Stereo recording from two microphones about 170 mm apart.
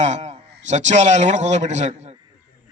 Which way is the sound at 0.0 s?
40° right (ahead or behind).